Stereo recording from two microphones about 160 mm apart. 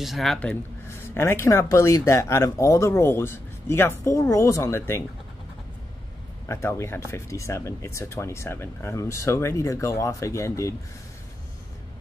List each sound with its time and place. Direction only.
0.0 s speech: centre (ahead or behind); by 5.0 s 15° left (ahead or behind)
6.4 s speech: 15° left (ahead or behind)